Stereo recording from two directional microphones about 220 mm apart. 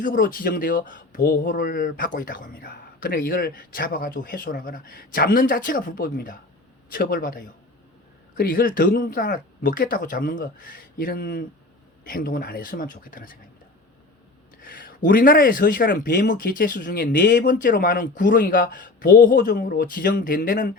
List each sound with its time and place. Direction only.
0.0 s speech: 40° left (ahead or behind)
14.6 s speech: 40° left (ahead or behind)